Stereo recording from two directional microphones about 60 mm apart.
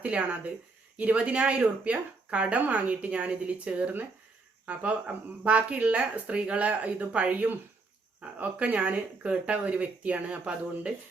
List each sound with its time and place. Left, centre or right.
0.0 s speech: right